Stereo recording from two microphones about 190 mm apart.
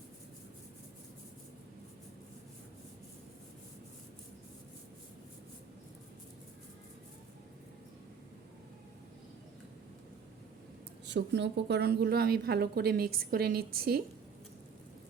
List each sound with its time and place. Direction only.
11.0 s speech: 65° right (ahead or behind)